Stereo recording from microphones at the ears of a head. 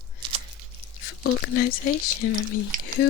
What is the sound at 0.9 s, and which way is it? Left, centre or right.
Speech, left.